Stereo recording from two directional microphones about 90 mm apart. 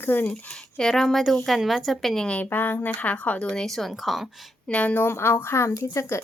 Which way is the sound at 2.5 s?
20° left (ahead or behind).